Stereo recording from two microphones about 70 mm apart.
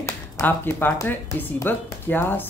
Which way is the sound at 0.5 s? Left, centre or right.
Left.